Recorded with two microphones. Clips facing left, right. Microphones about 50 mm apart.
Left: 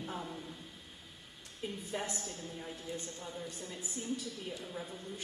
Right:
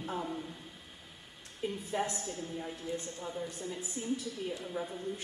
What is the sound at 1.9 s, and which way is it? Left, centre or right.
A woman's voice, centre.